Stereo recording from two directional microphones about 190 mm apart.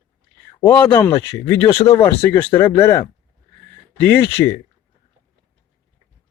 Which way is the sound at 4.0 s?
10° left (ahead or behind).